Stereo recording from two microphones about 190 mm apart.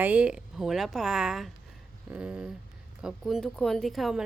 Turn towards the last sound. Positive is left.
turn(degrees=0)  # may be behind; listen again after turning